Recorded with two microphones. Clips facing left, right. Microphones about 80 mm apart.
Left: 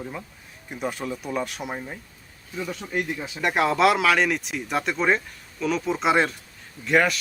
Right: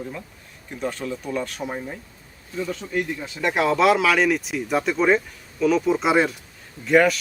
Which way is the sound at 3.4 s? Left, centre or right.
Centre.